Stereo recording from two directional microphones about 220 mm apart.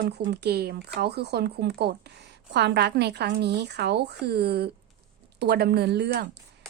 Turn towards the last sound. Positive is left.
turn(degrees=-50)  # may be behind; listen again after turning